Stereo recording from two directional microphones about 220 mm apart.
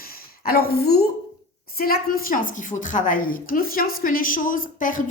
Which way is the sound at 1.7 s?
45° left (ahead or behind).